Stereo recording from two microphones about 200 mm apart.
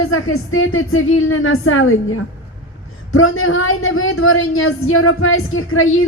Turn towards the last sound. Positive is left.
turn(degrees=90)